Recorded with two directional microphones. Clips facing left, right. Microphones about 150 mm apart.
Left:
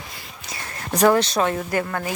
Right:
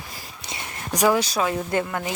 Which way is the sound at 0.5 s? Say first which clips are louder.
Left 2 dB; 20° right (ahead or behind).